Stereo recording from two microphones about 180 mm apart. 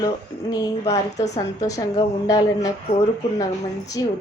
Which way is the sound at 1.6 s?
20° left (ahead or behind).